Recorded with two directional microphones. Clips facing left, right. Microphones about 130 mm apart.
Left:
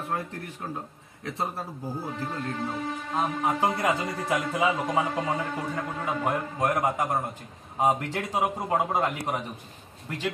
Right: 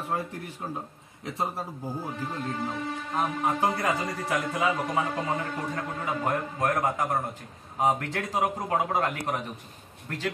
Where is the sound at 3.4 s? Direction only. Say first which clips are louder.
Left 1 dB; 20° left (ahead or behind).